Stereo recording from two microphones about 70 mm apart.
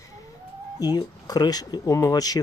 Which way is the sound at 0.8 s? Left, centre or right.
Left.